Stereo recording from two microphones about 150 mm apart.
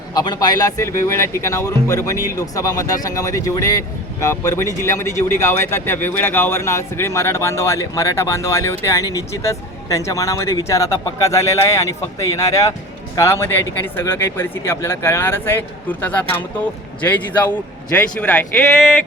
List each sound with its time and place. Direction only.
0.1 s speech: 25° left (ahead or behind); by 18.9 s 5° left (ahead or behind)